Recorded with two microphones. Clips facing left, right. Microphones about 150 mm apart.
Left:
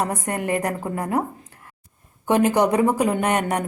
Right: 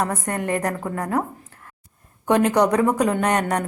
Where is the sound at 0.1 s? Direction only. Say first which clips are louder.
Even; 10° left (ahead or behind).